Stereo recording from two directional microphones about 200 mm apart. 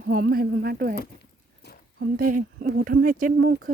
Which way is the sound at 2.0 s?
45° right (ahead or behind).